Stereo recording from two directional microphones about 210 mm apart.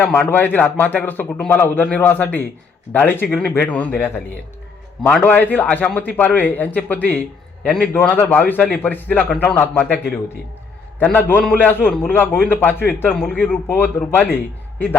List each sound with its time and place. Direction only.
0.0 s a man's voice: 10° left (ahead or behind)